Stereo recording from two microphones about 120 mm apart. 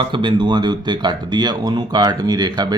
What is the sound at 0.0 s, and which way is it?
Speech, 40° right (ahead or behind).